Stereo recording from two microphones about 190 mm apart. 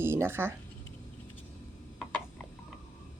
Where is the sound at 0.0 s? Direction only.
15° right (ahead or behind).